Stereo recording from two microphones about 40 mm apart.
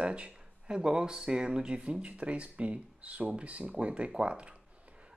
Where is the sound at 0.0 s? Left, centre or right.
Right.